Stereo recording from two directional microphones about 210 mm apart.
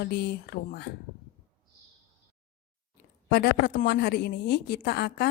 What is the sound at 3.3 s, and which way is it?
A woman's voice, 50° left (ahead or behind).